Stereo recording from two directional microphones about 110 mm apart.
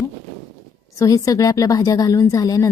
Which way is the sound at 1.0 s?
30° left (ahead or behind).